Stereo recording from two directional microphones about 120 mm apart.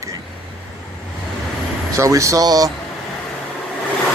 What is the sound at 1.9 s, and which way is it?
Speech, 25° right (ahead or behind).